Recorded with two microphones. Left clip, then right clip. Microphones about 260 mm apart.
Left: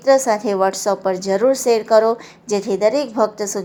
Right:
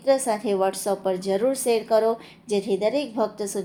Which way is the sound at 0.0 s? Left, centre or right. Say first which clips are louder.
Left 7 dB; centre.